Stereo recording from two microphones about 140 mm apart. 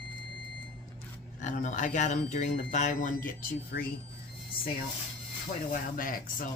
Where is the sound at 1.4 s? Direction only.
60° left (ahead or behind); by 3.8 s 85° left.